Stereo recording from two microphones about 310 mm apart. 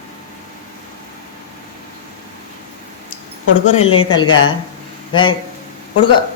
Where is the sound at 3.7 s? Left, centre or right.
Centre.